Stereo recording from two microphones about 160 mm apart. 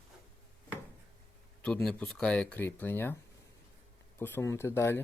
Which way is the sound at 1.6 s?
5° left (ahead or behind).